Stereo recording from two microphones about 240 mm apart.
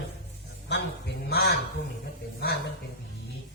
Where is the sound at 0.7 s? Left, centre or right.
Left.